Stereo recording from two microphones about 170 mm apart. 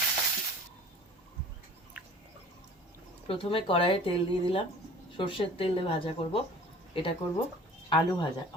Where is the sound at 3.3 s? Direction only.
35° left (ahead or behind).